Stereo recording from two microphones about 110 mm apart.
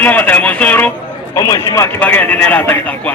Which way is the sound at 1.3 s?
30° left (ahead or behind).